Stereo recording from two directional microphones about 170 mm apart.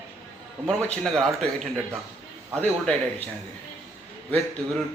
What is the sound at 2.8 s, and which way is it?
Speech, 5° left (ahead or behind).